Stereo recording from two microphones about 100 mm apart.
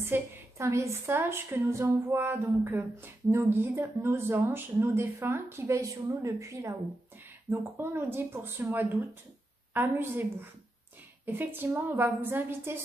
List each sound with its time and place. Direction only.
0.0 s a woman's voice: 20° right (ahead or behind)
11.2 s a woman's voice: 20° right (ahead or behind)